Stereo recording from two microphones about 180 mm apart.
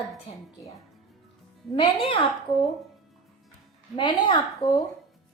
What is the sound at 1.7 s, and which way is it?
Speech, 30° left (ahead or behind).